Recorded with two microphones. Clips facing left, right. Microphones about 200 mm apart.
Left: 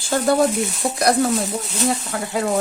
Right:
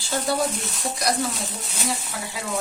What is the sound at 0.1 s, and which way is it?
Speech, 50° left (ahead or behind).